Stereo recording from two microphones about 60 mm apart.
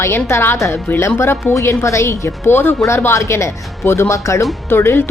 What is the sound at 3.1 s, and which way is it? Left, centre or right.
Speech, left.